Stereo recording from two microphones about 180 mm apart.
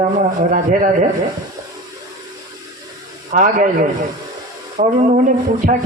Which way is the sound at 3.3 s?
45° right (ahead or behind).